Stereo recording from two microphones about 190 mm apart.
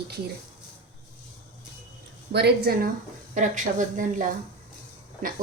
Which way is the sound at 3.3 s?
40° right (ahead or behind).